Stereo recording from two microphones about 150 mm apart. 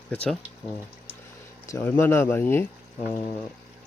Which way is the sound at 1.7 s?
15° left (ahead or behind).